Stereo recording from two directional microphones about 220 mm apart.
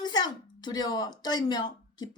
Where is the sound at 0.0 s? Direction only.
20° left (ahead or behind).